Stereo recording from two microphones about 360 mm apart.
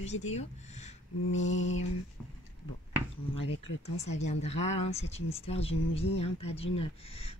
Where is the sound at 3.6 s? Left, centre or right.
Centre.